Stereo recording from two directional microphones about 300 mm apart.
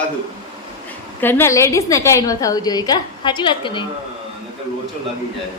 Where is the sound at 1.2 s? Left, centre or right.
Centre.